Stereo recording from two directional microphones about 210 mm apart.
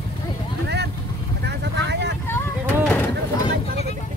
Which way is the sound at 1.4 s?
55° right (ahead or behind).